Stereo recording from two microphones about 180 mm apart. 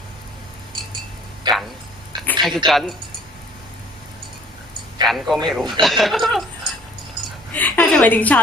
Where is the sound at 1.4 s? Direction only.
25° right (ahead or behind).